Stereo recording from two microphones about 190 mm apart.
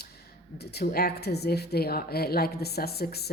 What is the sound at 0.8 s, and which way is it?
A woman's voice, 55° left (ahead or behind).